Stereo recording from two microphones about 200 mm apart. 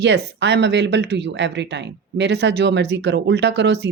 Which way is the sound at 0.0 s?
60° right (ahead or behind).